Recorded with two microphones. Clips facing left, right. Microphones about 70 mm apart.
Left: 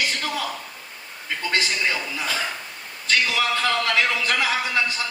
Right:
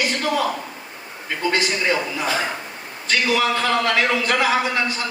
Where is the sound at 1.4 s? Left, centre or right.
Right.